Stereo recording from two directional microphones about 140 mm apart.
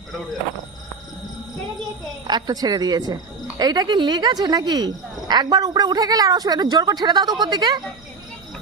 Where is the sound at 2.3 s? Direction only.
30° right (ahead or behind).